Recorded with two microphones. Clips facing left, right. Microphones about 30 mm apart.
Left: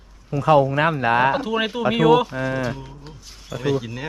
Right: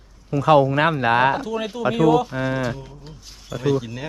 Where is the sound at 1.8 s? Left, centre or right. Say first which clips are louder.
Right 1 dB; left.